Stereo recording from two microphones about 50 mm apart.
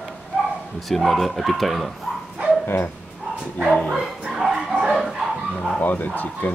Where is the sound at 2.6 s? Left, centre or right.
Left.